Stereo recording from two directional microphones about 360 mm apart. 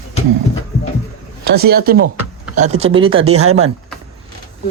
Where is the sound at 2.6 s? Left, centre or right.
Centre.